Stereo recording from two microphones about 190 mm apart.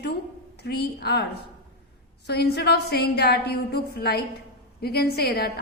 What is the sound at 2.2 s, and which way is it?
A woman's voice, 60° left (ahead or behind).